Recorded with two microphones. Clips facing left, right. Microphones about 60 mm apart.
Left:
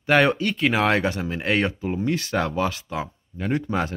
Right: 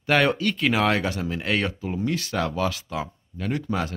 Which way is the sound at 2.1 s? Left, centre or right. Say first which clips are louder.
Left 2 dB; left.